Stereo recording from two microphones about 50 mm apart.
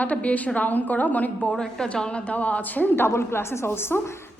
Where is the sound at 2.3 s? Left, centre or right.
Left.